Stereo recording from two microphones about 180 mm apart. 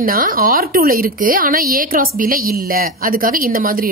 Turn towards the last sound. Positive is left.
turn(degrees=-50)  # may be behind; listen again after turning